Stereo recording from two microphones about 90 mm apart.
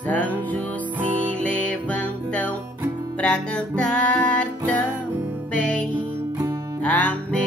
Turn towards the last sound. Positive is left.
turn(degrees=15)  # may be behind; listen again after turning